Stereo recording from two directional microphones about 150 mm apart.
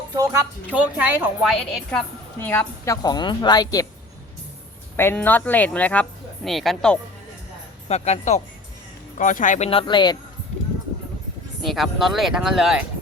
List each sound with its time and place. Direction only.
0.2 s speech: 20° right (ahead or behind)
0.7 s speech: 10° right (ahead or behind)
1.4 s speech: centre (ahead or behind)
2.4 s a woman's voice: 15° left (ahead or behind)
4.9 s speech: 15° left (ahead or behind)
7.9 s speech: 45° left (ahead or behind)
9.1 s speech: 60° left (ahead or behind)
9.6 s a woman's voice: 35° left (ahead or behind)
11.6 s speech: centre (ahead or behind)